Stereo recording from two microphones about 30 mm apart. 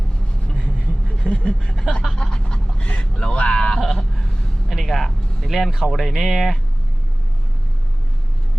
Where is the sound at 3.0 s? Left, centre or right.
Left.